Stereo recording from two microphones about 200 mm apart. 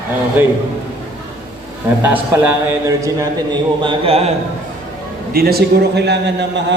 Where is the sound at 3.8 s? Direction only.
25° right (ahead or behind).